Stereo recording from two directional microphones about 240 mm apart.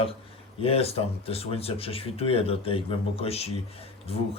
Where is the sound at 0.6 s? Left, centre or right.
Left.